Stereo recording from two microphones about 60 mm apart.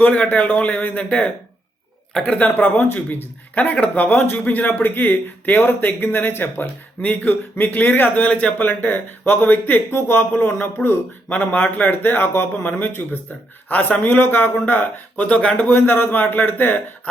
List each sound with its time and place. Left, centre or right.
0.0 s speech: left
2.2 s speech: left
2.6 s speech: left
7.0 s speech: left
8.2 s speech: centre
8.6 s speech: left
13.7 s speech: left
15.7 s speech: left